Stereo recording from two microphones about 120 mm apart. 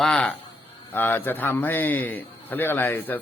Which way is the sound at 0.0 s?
5° left (ahead or behind).